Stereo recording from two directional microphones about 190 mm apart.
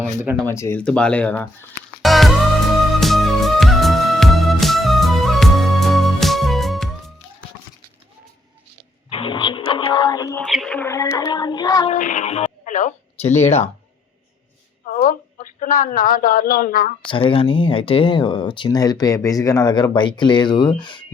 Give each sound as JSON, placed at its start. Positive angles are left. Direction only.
{"t": 0.3, "sound": "speech", "side_deg": 15}
{"t": 2.0, "sound": "music", "side_deg": 0}
{"t": 9.0, "sound": "music", "side_deg": 30}
{"t": 10.4, "sound": "child singing", "side_deg": 0}
{"t": 11.9, "sound": "a sound", "side_deg": 40}
{"t": 15.0, "sound": "speech", "side_deg": 45}
{"t": 17.1, "sound": "speech", "side_deg": 25}